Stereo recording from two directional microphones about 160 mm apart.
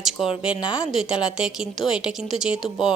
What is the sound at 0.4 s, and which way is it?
A woman's voice, 5° right (ahead or behind).